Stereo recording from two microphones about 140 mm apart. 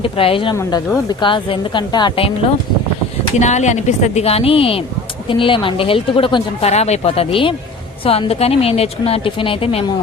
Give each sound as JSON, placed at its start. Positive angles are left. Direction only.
{"t": 0.0, "sound": "speech", "side_deg": 40}
{"t": 3.3, "sound": "speech", "side_deg": 55}